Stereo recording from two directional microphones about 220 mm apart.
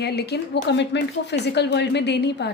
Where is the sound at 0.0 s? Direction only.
50° left (ahead or behind).